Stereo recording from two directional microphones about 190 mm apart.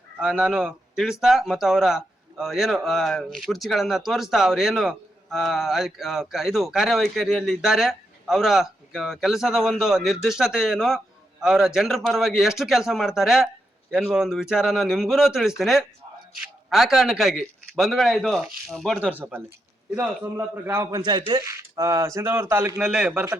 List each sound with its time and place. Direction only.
0.2 s a man's voice: 5° right (ahead or behind)